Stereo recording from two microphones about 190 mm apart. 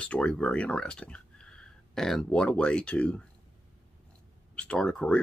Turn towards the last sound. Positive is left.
turn(degrees=5)  # may be behind; listen again after turning